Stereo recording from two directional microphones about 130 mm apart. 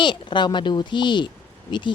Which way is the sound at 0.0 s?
35° left (ahead or behind).